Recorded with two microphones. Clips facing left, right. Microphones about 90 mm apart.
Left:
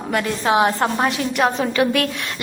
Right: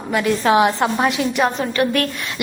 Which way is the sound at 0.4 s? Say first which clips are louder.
Right 2 dB; 25° left (ahead or behind).